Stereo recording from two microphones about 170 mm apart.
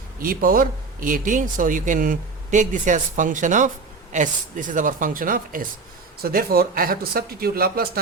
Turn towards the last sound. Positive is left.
turn(degrees=-65)  # may be behind; listen again after turning